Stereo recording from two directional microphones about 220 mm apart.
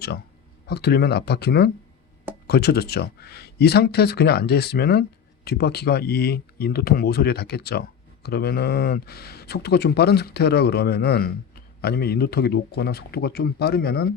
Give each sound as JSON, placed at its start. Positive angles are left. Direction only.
{"t": 0.7, "sound": "speech", "side_deg": 45}